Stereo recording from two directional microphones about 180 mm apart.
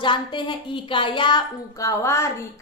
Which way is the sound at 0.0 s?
25° left (ahead or behind).